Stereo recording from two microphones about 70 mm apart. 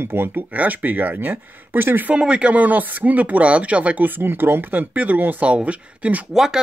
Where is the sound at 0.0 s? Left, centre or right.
Right.